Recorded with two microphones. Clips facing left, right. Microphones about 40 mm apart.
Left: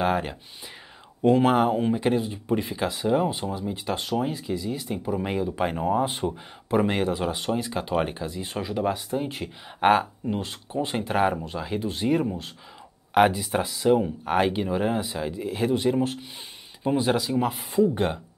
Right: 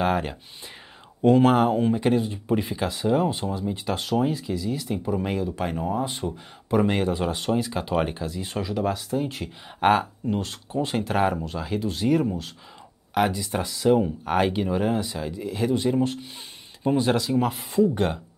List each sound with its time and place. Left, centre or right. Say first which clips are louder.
0.0 s speech: right 1 dB; centre; by 6.3 s left
6.7 s speech: right 1 dB; centre
13.1 s speech: left 4 dB; left
13.5 s speech: even; centre